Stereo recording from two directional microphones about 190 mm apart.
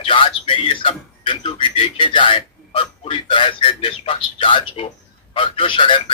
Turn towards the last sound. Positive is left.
turn(degrees=25)  # may be behind; listen again after turning